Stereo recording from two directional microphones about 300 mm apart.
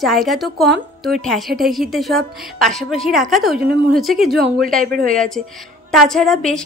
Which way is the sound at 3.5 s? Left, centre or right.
Right.